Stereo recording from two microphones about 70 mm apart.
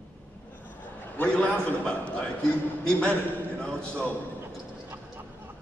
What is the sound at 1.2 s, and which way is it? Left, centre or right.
A man's voice, centre.